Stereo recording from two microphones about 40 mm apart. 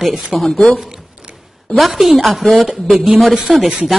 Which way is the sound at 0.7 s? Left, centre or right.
Centre.